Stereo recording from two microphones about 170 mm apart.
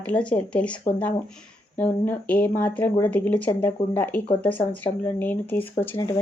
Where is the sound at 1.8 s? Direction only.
10° left (ahead or behind).